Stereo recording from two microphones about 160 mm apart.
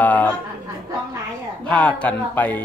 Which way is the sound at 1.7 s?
10° left (ahead or behind).